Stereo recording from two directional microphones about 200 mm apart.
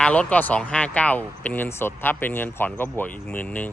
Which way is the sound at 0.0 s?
5° left (ahead or behind).